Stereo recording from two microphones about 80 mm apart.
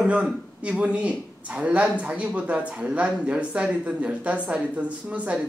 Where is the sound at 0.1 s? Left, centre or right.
Centre.